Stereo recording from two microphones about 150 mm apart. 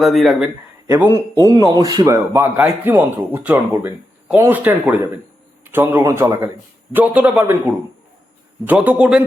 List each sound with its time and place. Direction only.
0.0 s speech: centre (ahead or behind)
0.9 s a man's voice: 15° right (ahead or behind)
1.5 s a man's voice: 30° right (ahead or behind); by 9.2 s 5° right (ahead or behind)